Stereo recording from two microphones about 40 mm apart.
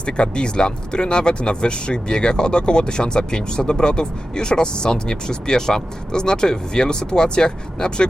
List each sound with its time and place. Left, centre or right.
0.0 s speech: left